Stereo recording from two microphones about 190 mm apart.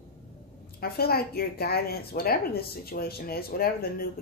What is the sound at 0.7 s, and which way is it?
A woman's voice, 55° left (ahead or behind).